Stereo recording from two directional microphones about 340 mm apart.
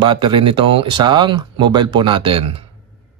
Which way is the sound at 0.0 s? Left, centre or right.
Centre.